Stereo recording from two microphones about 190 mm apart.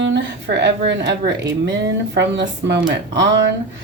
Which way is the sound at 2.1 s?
65° right (ahead or behind).